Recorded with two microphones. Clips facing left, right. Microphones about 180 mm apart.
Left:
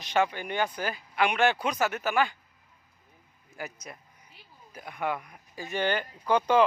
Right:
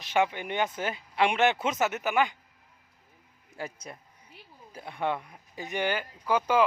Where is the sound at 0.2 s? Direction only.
20° right (ahead or behind).